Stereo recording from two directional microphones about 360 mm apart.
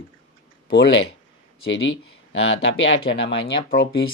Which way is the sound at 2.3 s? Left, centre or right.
Left.